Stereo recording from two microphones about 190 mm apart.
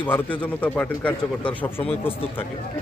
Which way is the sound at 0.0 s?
10° left (ahead or behind).